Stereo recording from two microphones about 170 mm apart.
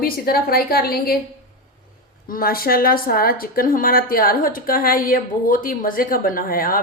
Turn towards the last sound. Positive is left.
turn(degrees=60)  # may be behind; listen again after turning